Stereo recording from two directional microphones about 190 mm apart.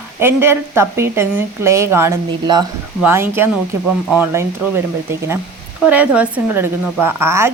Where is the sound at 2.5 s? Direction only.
25° right (ahead or behind).